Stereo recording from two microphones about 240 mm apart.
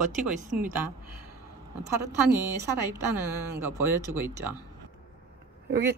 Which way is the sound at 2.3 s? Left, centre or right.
Centre.